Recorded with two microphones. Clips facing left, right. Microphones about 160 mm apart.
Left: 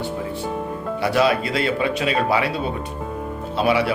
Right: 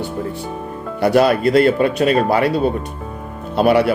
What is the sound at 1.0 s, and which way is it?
Speech, 50° right (ahead or behind).